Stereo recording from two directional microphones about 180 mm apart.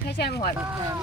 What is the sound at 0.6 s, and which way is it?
Speech, 20° right (ahead or behind).